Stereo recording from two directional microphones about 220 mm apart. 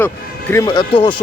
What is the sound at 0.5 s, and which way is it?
Speech, 20° left (ahead or behind).